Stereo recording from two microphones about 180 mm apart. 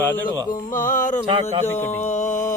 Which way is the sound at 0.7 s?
50° left (ahead or behind).